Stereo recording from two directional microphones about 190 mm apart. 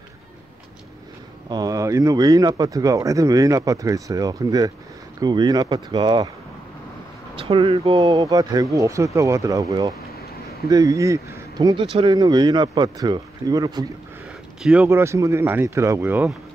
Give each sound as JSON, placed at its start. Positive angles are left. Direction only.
{"t": 1.5, "sound": "speech", "side_deg": -20}
{"t": 7.3, "sound": "speech", "side_deg": -30}
{"t": 14.6, "sound": "speech", "side_deg": -5}